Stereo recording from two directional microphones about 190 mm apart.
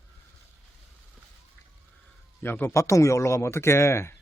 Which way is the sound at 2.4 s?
10° left (ahead or behind).